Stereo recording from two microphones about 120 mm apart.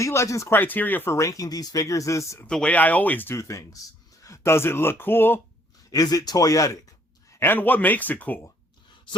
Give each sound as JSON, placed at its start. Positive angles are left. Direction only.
{"t": 0.0, "sound": "speech", "side_deg": 25}
{"t": 2.5, "sound": "speech", "side_deg": 10}
{"t": 5.9, "sound": "speech", "side_deg": 30}